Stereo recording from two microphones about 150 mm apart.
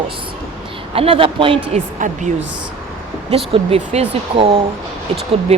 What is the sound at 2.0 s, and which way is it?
Speech, 55° right (ahead or behind).